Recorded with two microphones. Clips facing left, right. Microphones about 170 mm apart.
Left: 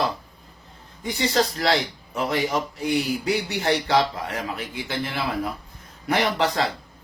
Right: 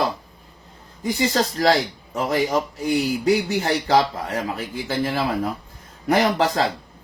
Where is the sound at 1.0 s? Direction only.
40° right (ahead or behind).